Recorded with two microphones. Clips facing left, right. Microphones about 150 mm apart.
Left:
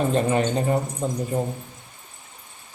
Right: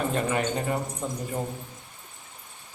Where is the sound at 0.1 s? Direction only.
25° left (ahead or behind).